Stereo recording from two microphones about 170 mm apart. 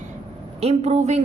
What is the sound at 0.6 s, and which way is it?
Speech, 40° right (ahead or behind).